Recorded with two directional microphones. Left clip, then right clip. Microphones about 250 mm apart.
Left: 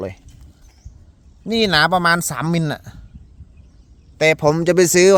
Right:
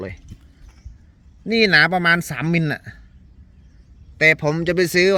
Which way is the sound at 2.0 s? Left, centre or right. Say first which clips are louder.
Left 1 dB; centre.